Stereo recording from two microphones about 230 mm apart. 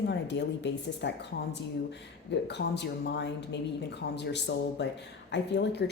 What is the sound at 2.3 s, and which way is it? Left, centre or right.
Speech, left.